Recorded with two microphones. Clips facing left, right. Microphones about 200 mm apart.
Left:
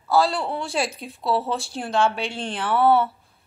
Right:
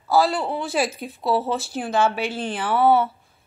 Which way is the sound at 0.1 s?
5° right (ahead or behind).